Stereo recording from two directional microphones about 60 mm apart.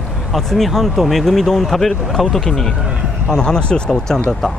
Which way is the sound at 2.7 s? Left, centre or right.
Centre.